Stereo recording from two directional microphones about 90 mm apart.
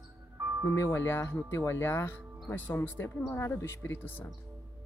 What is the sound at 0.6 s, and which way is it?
Speech, 30° left (ahead or behind).